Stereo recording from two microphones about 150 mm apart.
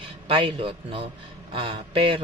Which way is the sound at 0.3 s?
35° right (ahead or behind).